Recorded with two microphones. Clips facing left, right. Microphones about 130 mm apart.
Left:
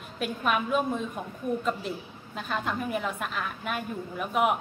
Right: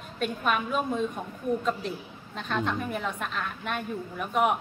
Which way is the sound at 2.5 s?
5° left (ahead or behind).